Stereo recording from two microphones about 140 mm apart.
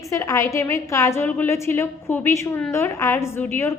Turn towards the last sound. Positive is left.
turn(degrees=15)  # may be behind; listen again after turning